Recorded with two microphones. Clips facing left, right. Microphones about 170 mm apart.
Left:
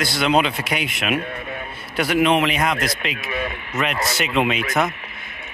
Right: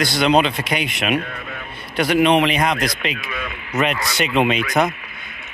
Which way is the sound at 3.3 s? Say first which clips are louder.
Left 3 dB; 35° left (ahead or behind).